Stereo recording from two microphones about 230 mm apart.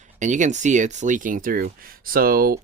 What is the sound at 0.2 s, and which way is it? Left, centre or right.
Speech, right.